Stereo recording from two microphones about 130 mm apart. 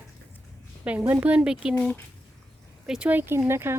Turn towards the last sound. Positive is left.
turn(degrees=-20)  # may be behind; listen again after turning